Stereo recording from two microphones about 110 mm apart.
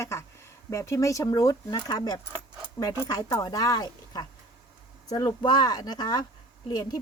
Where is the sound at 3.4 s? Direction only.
35° left (ahead or behind).